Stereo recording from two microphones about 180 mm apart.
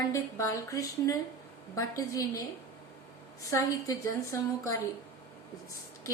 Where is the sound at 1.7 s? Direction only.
20° left (ahead or behind).